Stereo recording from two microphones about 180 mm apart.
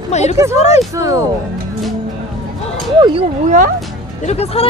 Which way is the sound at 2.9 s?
25° right (ahead or behind).